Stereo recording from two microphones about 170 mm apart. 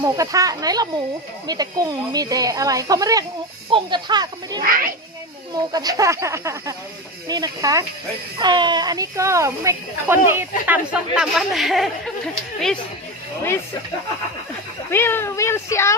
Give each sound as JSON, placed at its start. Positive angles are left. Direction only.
{"t": 0.0, "sound": "speech", "side_deg": -20}
{"t": 4.6, "sound": "speech", "side_deg": -55}
{"t": 5.7, "sound": "speech", "side_deg": -20}
{"t": 14.8, "sound": "speech", "side_deg": 15}